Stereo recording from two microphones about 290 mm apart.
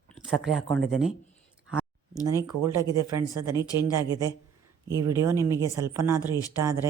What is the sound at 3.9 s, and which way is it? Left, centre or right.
Speech, centre.